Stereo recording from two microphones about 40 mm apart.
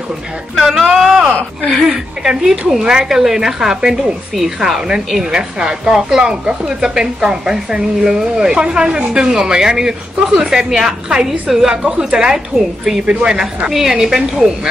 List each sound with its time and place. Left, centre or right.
0.6 s speech: centre; by 12.4 s right
12.5 s speech: centre
13.0 s speech: right
13.7 s speech: centre